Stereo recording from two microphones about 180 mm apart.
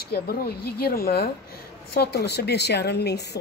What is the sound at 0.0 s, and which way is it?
A woman's voice, 60° left (ahead or behind).